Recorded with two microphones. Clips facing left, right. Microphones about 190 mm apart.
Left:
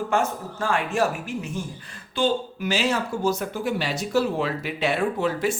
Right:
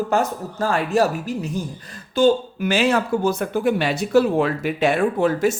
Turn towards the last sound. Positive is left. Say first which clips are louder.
# right 5 dB
turn(degrees=-45)  # may be behind; listen again after turning